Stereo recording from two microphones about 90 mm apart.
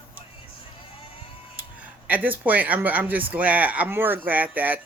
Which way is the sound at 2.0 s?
20° right (ahead or behind).